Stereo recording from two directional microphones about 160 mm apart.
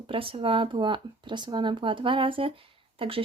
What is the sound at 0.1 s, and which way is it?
Speech, 35° right (ahead or behind).